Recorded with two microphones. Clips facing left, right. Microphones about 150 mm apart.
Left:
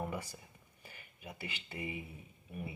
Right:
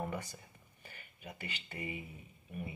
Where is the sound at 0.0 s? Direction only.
10° left (ahead or behind).